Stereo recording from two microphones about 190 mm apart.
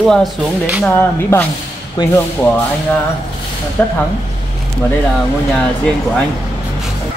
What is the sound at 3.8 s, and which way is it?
Speech, 10° left (ahead or behind).